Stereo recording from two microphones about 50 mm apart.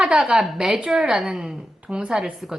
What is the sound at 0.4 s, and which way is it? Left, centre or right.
A woman's voice, centre.